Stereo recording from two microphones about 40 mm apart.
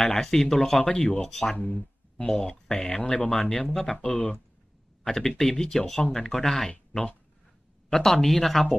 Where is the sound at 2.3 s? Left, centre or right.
Left.